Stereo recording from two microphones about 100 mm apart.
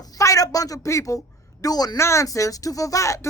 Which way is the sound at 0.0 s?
35° left (ahead or behind).